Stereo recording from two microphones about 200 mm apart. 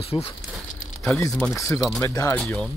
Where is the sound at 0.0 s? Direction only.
30° left (ahead or behind).